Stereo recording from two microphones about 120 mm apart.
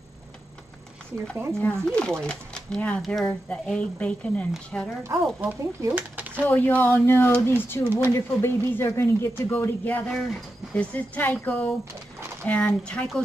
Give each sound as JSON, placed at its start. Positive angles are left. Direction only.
{"t": 1.7, "sound": "a woman's voice", "side_deg": 5}
{"t": 5.0, "sound": "speech", "side_deg": -20}
{"t": 5.9, "sound": "a sound", "side_deg": -15}
{"t": 6.4, "sound": "a woman's voice", "side_deg": 15}
{"t": 10.0, "sound": "a woman's voice", "side_deg": 0}